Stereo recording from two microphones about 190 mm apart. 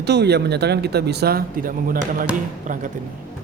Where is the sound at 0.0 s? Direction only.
60° right (ahead or behind).